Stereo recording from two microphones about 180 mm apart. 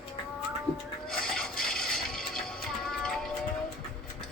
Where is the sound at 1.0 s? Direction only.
5° left (ahead or behind).